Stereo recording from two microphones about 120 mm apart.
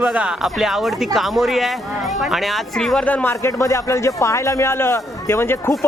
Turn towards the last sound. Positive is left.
turn(degrees=20)  # may be behind; listen again after turning